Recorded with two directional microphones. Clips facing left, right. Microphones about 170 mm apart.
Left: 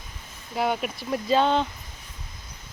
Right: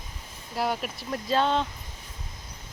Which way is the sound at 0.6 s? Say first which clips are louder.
Left 3 dB; centre (ahead or behind).